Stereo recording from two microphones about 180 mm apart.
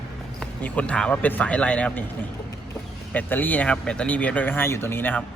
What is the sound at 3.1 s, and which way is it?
Speech, 10° left (ahead or behind).